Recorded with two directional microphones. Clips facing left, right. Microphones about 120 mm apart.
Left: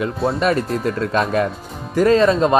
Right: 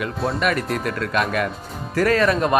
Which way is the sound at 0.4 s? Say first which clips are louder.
Left 3 dB; 30° left (ahead or behind).